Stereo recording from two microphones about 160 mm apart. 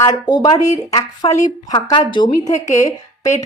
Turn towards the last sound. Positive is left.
turn(degrees=20)  # may be behind; listen again after turning